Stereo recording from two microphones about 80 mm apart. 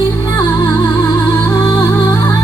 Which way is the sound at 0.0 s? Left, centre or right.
Left.